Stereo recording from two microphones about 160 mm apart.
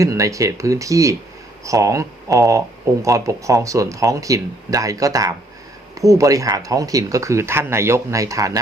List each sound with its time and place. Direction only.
0.0 s speech: 20° right (ahead or behind)